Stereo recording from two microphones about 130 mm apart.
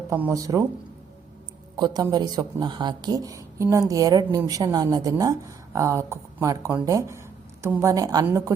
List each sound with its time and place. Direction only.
0.1 s speech: 20° right (ahead or behind)
1.7 s speech: 35° right (ahead or behind)